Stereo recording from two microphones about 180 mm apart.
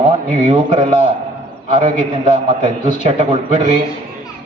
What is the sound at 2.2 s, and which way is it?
A man's voice, 25° right (ahead or behind).